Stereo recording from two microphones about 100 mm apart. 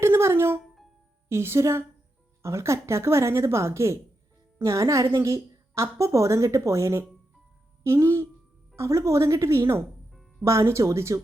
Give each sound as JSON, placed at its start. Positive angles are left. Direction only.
{"t": 0.0, "sound": "music", "side_deg": -25}
{"t": 1.3, "sound": "a woman's voice", "side_deg": -25}